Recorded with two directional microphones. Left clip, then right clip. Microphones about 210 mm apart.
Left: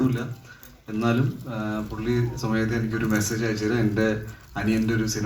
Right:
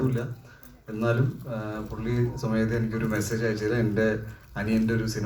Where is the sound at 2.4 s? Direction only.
30° left (ahead or behind).